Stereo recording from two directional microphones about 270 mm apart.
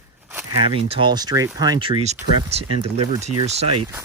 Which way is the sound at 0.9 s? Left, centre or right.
Centre.